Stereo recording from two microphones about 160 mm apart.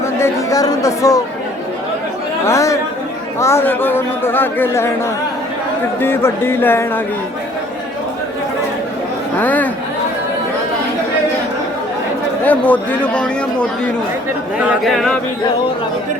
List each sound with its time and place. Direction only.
0.0 s speech: 20° left (ahead or behind)
2.5 s speech: 20° left (ahead or behind)
6.0 s speech: 15° left (ahead or behind)
9.4 s speech: 10° left (ahead or behind)
12.5 s speech: 10° left (ahead or behind)
14.6 s speech: 5° right (ahead or behind)